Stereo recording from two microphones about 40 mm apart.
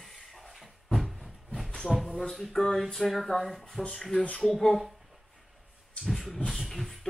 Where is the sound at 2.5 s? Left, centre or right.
Centre.